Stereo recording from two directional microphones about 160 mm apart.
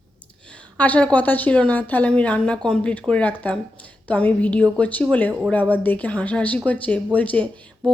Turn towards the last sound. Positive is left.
turn(degrees=5)  # may be behind; listen again after turning